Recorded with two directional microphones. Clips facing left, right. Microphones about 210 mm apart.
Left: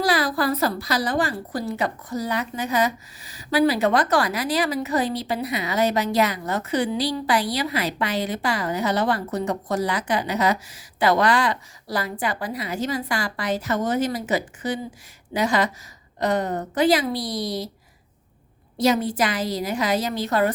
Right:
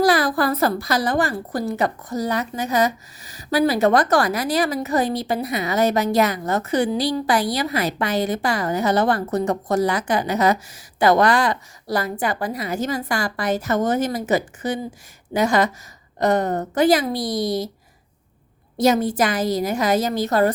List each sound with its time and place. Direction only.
0.0 s a woman's voice: 50° right (ahead or behind)
18.8 s a woman's voice: 45° right (ahead or behind)